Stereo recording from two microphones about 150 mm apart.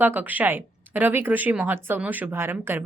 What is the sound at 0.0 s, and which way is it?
Speech, 10° right (ahead or behind).